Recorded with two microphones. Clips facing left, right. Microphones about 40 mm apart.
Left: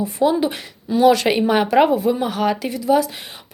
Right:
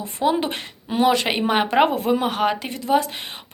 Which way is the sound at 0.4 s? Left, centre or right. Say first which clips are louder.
Left 4 dB; right.